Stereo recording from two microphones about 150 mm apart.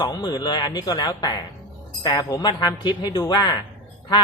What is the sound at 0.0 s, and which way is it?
A woman's voice, 25° left (ahead or behind).